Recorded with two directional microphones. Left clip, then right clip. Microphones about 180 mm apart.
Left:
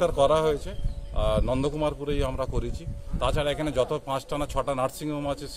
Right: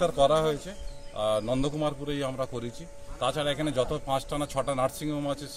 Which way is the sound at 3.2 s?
30° left (ahead or behind).